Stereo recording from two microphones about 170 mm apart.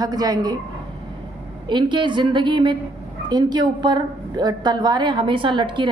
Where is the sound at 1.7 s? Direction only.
25° right (ahead or behind).